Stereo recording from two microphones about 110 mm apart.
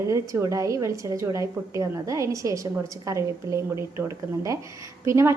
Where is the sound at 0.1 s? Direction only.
30° right (ahead or behind).